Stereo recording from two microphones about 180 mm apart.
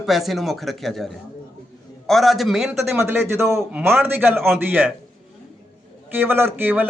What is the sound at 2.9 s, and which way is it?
Speech, 10° right (ahead or behind).